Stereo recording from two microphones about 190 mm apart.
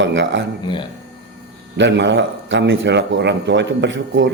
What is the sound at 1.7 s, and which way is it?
A man's voice, 70° right (ahead or behind).